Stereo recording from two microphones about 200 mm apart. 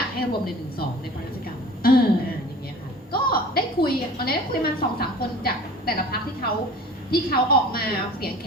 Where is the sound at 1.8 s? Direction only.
50° left (ahead or behind).